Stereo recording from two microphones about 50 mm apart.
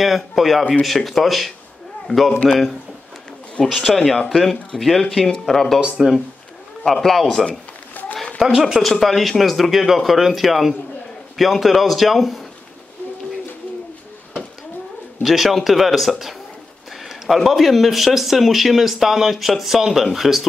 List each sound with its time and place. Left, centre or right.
0.0 s speech: centre
2.3 s speech: left
3.6 s speech: centre
5.9 s speech: centre
6.8 s speech: centre
7.9 s a sound: left
8.5 s a man's voice: centre
8.8 s speech: centre
15.2 s speech: centre